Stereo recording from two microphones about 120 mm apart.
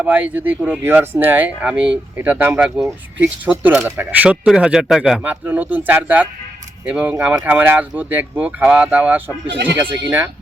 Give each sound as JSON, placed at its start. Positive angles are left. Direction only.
{"t": 0.0, "sound": "speech", "side_deg": -15}
{"t": 2.6, "sound": "speech", "side_deg": -5}